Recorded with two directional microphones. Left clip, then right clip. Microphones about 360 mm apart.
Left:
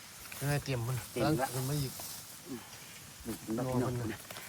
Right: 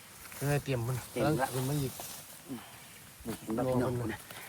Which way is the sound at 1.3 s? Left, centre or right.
Centre.